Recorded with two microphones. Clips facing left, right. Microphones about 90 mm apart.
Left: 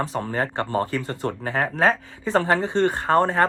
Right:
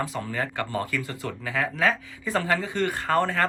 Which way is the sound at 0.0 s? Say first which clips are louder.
Left 4 dB; 35° left (ahead or behind).